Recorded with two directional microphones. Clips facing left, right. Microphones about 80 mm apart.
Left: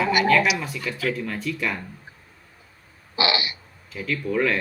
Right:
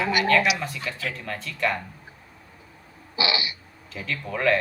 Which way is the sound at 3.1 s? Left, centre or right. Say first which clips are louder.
Left 3 dB; left.